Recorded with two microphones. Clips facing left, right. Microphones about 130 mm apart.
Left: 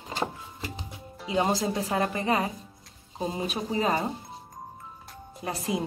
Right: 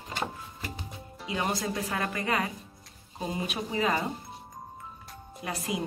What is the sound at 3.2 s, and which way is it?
Speech, 30° left (ahead or behind).